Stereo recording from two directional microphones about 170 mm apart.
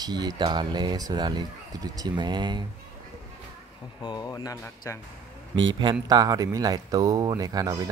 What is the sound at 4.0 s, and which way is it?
Speech, 25° left (ahead or behind).